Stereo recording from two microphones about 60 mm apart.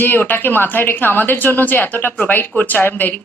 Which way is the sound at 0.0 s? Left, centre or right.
Left.